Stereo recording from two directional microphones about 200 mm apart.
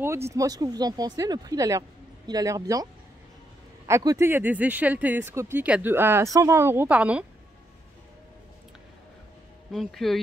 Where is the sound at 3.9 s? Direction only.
15° right (ahead or behind).